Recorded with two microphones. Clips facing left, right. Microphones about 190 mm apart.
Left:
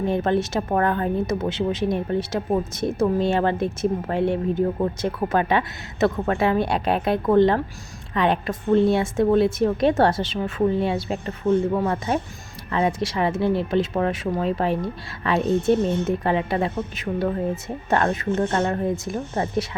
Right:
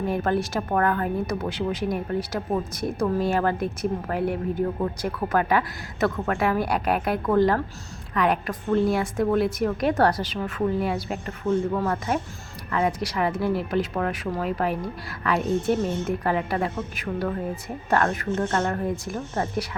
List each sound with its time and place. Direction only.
0.0 s speech: 25° left (ahead or behind)
15.7 s speech: 60° left (ahead or behind)
16.0 s speech: 25° left (ahead or behind)